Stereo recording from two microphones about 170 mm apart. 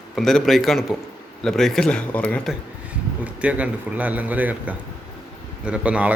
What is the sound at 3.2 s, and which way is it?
A man's voice, 5° right (ahead or behind).